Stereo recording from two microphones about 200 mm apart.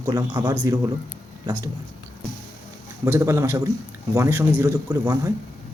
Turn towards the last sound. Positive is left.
turn(degrees=-15)  # may be behind; listen again after turning